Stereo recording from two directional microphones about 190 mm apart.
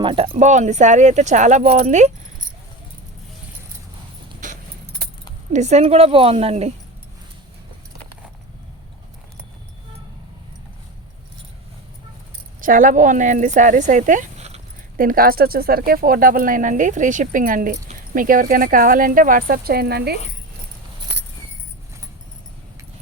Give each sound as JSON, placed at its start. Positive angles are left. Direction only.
{"t": 0.0, "sound": "speech", "side_deg": -25}
{"t": 4.4, "sound": "keys jangling", "side_deg": -45}
{"t": 5.5, "sound": "speech", "side_deg": -35}
{"t": 12.5, "sound": "speech", "side_deg": -45}
{"t": 15.0, "sound": "speech", "side_deg": -50}